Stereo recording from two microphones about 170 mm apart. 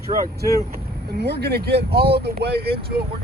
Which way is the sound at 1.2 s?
75° right (ahead or behind).